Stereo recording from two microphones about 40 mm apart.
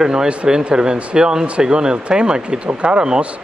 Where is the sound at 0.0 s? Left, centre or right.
Centre.